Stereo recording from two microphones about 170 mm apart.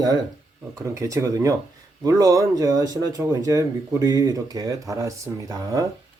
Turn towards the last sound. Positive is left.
turn(degrees=-20)  # may be behind; listen again after turning